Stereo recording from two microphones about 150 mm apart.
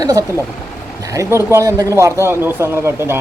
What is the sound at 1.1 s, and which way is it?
Speech, 20° right (ahead or behind).